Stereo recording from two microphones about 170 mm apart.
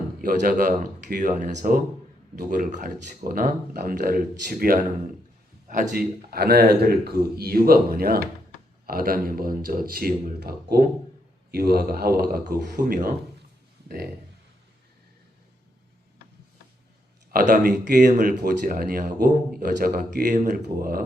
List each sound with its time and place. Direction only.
0.2 s a man's voice: 60° right (ahead or behind)
5.9 s speech: 65° right (ahead or behind)
17.3 s speech: 60° right (ahead or behind)